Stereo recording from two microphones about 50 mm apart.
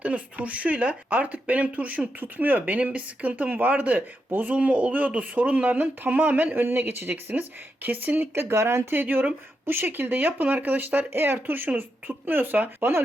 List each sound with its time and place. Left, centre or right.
0.0 s speech: right
4.5 s speech: right
8.4 s speech: right
8.9 s speech: right